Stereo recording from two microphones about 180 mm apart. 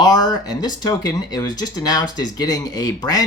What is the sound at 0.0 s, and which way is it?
Speech, 20° left (ahead or behind).